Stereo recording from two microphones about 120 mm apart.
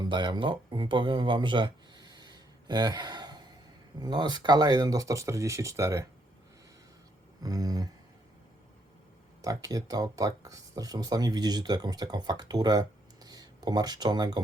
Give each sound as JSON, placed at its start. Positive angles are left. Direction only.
{"t": 0.0, "sound": "a sound", "side_deg": -40}
{"t": 4.0, "sound": "speech", "side_deg": -35}
{"t": 7.4, "sound": "speech", "side_deg": -30}
{"t": 9.4, "sound": "speech", "side_deg": -30}